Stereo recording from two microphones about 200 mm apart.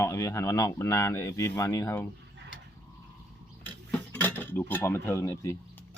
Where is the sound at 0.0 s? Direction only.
15° left (ahead or behind).